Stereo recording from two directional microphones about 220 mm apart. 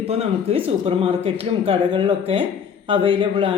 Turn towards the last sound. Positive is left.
turn(degrees=-20)  # may be behind; listen again after turning